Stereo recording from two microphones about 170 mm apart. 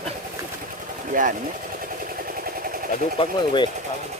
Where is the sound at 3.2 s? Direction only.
30° left (ahead or behind).